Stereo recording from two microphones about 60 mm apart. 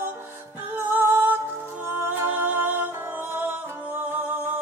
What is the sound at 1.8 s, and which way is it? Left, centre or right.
Music, right.